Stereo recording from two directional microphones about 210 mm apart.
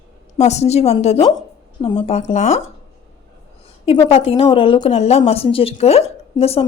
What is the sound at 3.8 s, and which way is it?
A woman's voice, 25° left (ahead or behind).